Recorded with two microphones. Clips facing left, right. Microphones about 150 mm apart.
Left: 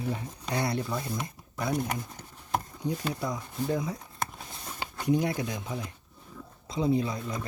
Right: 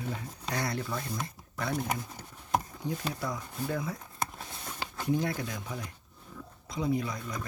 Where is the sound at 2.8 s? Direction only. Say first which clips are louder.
Left 3 dB; 20° left (ahead or behind).